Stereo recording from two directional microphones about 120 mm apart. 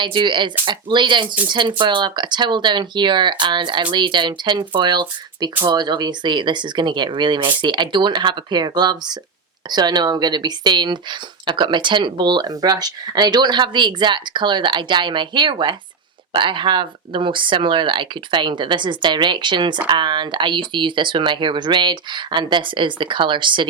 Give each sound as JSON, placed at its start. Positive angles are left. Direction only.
{"t": 0.0, "sound": "speech", "side_deg": -40}